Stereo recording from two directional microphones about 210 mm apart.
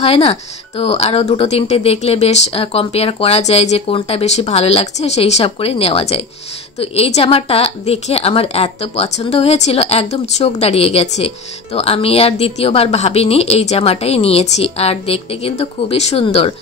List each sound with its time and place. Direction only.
0.0 s a woman's voice: 30° left (ahead or behind)